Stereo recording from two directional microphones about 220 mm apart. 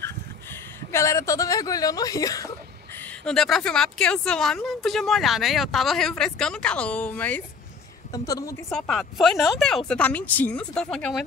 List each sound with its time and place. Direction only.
0.0 s a woman's voice: 10° left (ahead or behind)
8.6 s speech: centre (ahead or behind)